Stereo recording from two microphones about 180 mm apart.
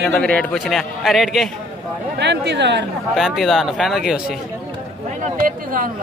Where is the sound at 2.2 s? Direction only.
70° right (ahead or behind).